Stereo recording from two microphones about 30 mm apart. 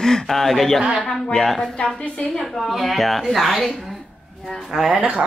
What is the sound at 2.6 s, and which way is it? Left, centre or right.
Speech, centre.